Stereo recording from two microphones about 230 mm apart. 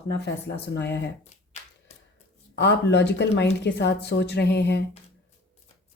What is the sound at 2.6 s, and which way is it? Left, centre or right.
Speech, left.